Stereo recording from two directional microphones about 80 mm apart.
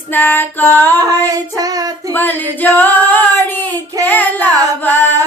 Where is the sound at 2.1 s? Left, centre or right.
Left.